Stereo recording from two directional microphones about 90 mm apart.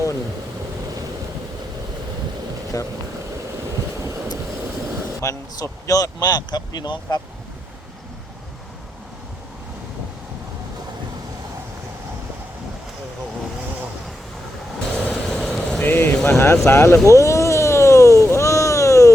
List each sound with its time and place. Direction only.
2.7 s speech: 40° left (ahead or behind)
5.2 s speech: 35° left (ahead or behind)
6.0 s speech: 45° left (ahead or behind)
14.9 s vehicle: 10° left (ahead or behind)
15.8 s a sound: 25° left (ahead or behind)
16.6 s speech: 30° left (ahead or behind)
17.1 s a sound: 35° left (ahead or behind)